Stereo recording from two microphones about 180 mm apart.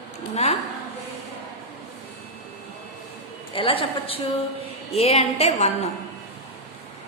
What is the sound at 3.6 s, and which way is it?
A woman's voice, 30° left (ahead or behind).